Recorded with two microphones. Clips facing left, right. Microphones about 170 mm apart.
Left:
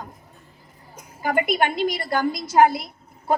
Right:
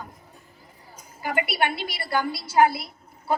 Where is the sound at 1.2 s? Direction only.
45° left (ahead or behind).